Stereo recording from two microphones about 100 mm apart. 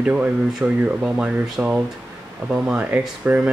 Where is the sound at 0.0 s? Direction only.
10° right (ahead or behind).